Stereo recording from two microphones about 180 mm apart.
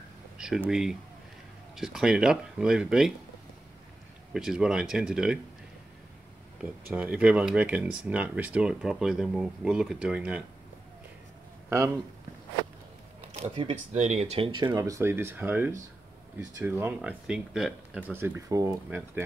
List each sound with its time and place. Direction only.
0.4 s speech: 5° right (ahead or behind)
4.3 s speech: centre (ahead or behind)
6.9 s speech: 5° right (ahead or behind)
13.3 s speech: 30° right (ahead or behind); by 19.2 s 10° right (ahead or behind)